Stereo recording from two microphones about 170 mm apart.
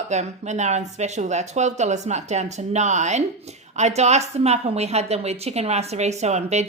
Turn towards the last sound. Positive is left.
turn(degrees=-40)  # may be behind; listen again after turning